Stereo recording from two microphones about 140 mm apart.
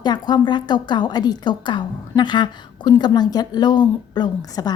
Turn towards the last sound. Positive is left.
turn(degrees=30)  # may be behind; listen again after turning